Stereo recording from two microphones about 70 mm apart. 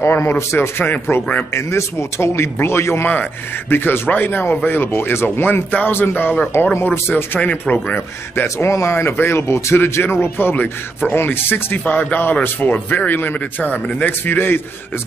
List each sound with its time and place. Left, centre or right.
0.0 s a man's voice: left
8.6 s a man's voice: left